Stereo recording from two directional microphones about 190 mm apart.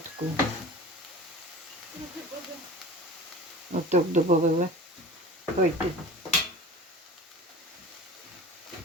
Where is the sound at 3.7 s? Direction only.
40° right (ahead or behind).